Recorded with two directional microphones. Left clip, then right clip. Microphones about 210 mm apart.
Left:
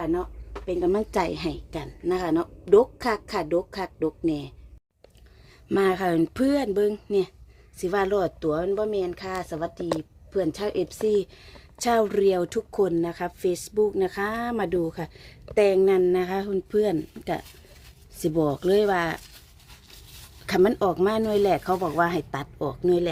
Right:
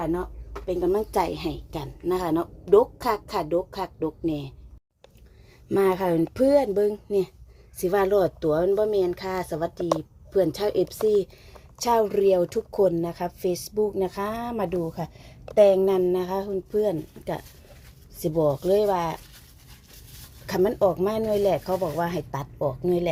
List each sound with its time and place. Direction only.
0.6 s a woman's voice: 20° left (ahead or behind)
5.6 s speech: 15° left (ahead or behind)
7.8 s a woman's voice: 5° left (ahead or behind); by 19.2 s 30° left (ahead or behind)
20.5 s a woman's voice: 30° left (ahead or behind)